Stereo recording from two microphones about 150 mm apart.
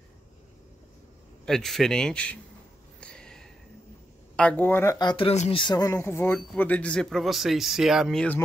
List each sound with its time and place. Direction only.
1.4 s speech: 5° left (ahead or behind)
3.0 s a sound: 5° left (ahead or behind)
4.4 s speech: 10° left (ahead or behind)
4.9 s speech: 35° left (ahead or behind); by 8.4 s 5° left (ahead or behind)